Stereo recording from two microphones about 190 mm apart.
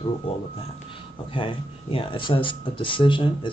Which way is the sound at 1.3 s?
30° left (ahead or behind).